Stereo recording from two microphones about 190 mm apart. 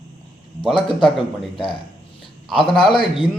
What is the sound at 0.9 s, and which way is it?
Speech, centre (ahead or behind).